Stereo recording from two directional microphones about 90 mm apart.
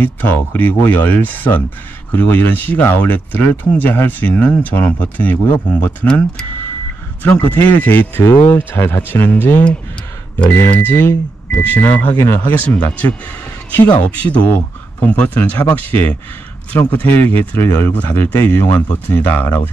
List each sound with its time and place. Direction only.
0.0 s speech: 20° left (ahead or behind)